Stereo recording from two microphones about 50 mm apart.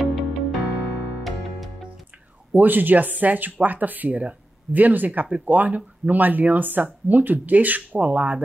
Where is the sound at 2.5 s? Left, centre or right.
Right.